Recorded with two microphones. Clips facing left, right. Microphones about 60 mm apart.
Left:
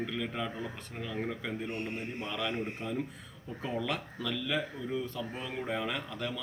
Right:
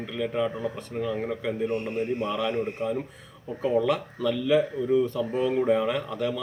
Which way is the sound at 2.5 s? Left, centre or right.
Right.